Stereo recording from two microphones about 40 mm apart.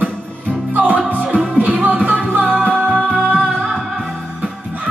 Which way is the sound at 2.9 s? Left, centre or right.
Centre.